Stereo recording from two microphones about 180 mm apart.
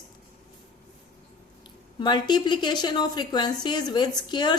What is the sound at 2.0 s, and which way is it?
A woman's voice, 25° left (ahead or behind).